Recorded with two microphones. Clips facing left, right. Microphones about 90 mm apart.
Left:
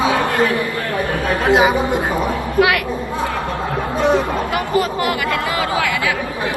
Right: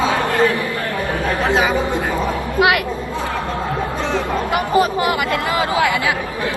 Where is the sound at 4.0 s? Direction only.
15° left (ahead or behind).